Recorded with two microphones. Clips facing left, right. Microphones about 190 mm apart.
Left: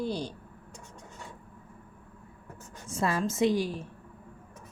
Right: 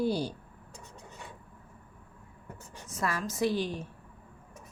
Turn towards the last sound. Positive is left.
turn(degrees=5)  # may be behind; listen again after turning